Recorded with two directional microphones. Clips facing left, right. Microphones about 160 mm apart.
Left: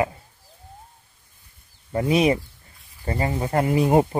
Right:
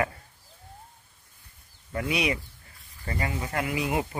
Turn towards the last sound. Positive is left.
turn(degrees=40)  # may be behind; listen again after turning